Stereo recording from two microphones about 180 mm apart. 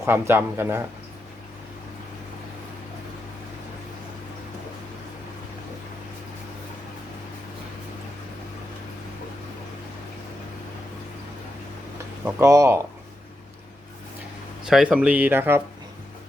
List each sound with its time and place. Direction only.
0.0 s speech: 10° right (ahead or behind)
12.2 s speech: 15° right (ahead or behind)
14.7 s speech: 5° right (ahead or behind)